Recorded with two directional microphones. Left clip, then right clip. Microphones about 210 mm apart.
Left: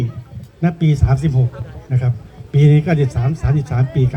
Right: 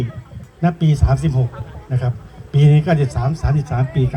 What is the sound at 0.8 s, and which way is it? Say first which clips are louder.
A man's voice: even; 10° right (ahead or behind).